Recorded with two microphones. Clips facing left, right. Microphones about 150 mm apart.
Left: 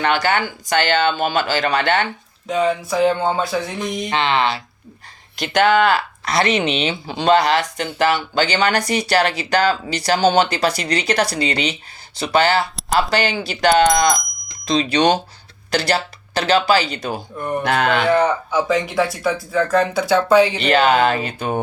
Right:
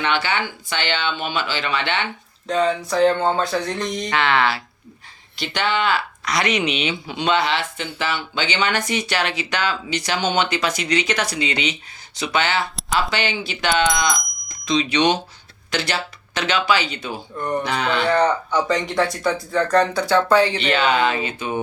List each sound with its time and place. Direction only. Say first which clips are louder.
0.0 s speech: left 4 dB; 40° left (ahead or behind)
2.5 s a sound: left 1 dB; 5° left (ahead or behind)
4.1 s speech: left 1 dB; 20° left (ahead or behind)
5.4 s speech: left 7 dB; 45° left (ahead or behind)
6.2 s speech: left 3 dB; 30° left (ahead or behind); by 14.2 s 45° left (ahead or behind)
14.6 s speech: left 2 dB; 35° left (ahead or behind)
17.3 s speech: right 1 dB; 5° left (ahead or behind)
17.6 s speech: left 6 dB; 50° left (ahead or behind)
18.0 s a sound: left 2 dB; 5° left (ahead or behind)
19.7 s speech: even; 10° left (ahead or behind)
20.6 s speech: left 4 dB; 45° left (ahead or behind)